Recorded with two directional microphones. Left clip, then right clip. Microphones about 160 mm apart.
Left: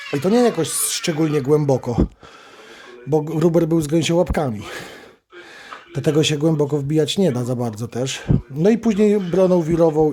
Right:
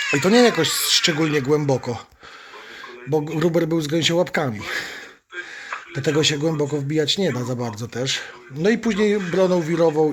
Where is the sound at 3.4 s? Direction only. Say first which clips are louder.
Left 4 dB; 25° left (ahead or behind).